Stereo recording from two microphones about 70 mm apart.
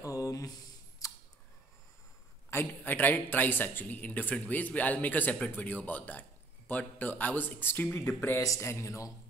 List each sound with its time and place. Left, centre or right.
0.0 s a sound: left
2.5 s speech: left
8.4 s speech: left